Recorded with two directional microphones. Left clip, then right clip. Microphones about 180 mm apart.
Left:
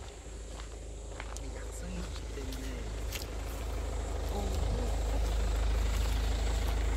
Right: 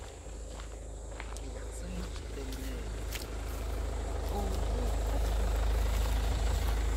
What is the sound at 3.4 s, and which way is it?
Vehicle, 60° right (ahead or behind).